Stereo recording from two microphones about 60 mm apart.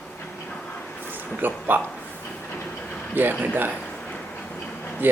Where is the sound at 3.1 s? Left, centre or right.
Right.